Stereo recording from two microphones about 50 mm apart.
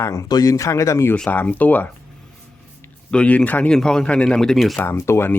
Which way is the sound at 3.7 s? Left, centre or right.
Centre.